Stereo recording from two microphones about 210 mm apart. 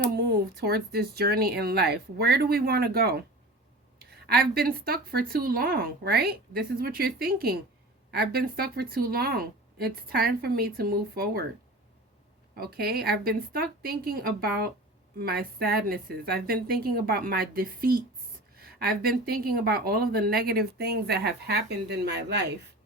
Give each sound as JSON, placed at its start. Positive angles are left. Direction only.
{"t": 0.1, "sound": "a woman's voice", "side_deg": -50}
{"t": 12.5, "sound": "a woman's voice", "side_deg": -45}